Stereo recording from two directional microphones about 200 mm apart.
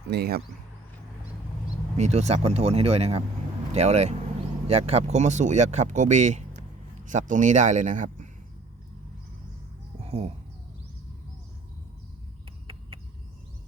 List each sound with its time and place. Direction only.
0.1 s speech: 55° right (ahead or behind)
2.0 s speech: 35° right (ahead or behind)
10.0 s speech: 30° right (ahead or behind)